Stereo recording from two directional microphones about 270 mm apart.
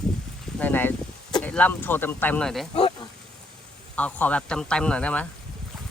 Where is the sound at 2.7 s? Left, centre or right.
Left.